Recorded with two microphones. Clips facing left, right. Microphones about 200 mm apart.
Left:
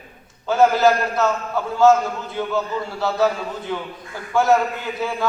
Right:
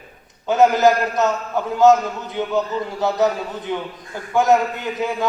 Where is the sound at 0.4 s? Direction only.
20° right (ahead or behind).